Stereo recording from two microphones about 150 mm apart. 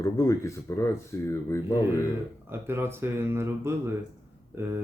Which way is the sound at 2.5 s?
15° right (ahead or behind).